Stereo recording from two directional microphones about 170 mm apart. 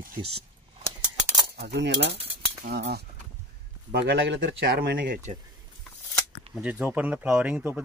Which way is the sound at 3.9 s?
90° right.